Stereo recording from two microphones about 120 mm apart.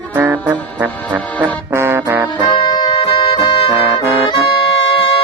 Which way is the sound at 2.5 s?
45° left (ahead or behind).